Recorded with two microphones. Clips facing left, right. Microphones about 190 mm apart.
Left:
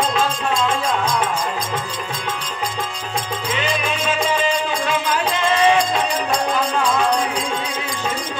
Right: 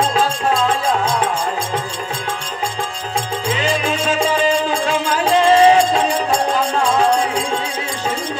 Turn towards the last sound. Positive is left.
turn(degrees=-30)  # may be behind; listen again after turning